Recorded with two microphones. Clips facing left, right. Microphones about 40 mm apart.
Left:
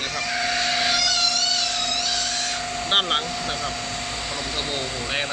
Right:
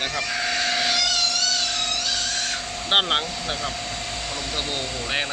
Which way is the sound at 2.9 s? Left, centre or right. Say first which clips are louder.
Right 1 dB; centre.